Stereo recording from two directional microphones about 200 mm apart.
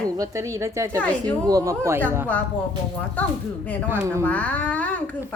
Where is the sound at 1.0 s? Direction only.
5° left (ahead or behind).